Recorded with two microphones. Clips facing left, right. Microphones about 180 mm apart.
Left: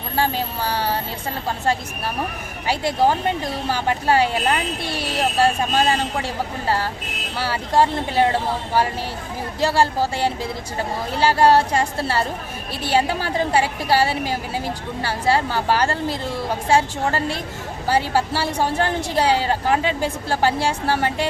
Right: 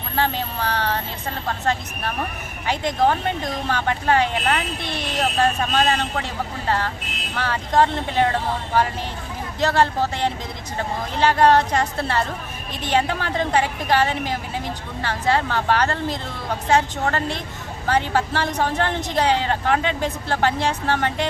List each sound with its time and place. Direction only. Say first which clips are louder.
0.2 s a woman's voice: left 1 dB; 10° left (ahead or behind)
2.6 s a woman's voice: left 1 dB; 10° left (ahead or behind)
9.6 s a woman's voice: even; 10° left (ahead or behind)